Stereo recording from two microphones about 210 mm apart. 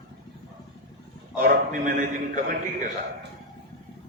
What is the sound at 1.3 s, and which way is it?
A man's voice, 40° right (ahead or behind).